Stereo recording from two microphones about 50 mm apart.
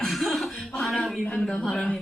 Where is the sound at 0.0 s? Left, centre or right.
Centre.